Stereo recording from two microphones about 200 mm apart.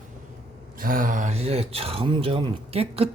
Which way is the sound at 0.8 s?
45° right (ahead or behind).